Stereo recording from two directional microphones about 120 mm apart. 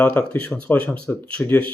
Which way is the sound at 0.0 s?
15° left (ahead or behind).